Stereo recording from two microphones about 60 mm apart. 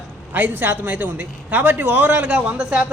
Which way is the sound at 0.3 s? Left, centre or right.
Right.